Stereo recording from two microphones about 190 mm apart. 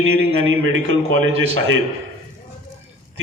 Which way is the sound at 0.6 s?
90° right.